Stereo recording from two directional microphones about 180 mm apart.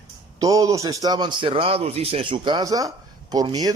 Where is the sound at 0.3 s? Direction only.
20° right (ahead or behind).